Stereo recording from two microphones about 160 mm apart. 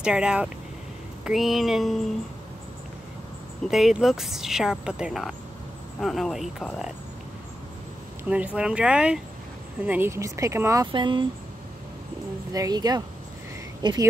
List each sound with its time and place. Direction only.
0.0 s speech: 5° right (ahead or behind)
3.7 s speech: centre (ahead or behind)
8.2 s a woman's voice: 10° right (ahead or behind); by 11.2 s 30° right (ahead or behind)
12.5 s a woman's voice: 25° right (ahead or behind)